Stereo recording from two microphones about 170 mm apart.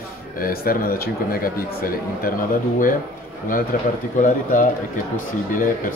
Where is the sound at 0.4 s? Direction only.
55° left (ahead or behind).